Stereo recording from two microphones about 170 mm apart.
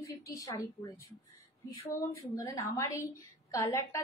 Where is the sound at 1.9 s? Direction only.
20° left (ahead or behind).